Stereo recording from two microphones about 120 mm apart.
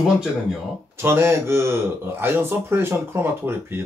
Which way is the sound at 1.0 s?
20° right (ahead or behind).